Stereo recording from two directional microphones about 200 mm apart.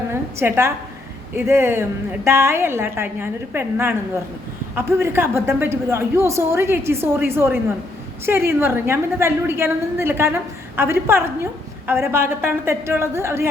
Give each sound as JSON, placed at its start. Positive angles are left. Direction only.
{"t": 0.1, "sound": "a woman's voice", "side_deg": -10}